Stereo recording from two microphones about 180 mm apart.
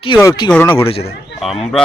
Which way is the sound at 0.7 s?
30° left (ahead or behind).